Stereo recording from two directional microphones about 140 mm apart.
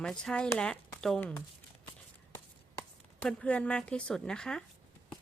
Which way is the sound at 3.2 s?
5° left (ahead or behind).